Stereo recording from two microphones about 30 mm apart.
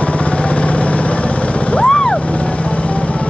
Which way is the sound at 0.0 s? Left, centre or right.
Left.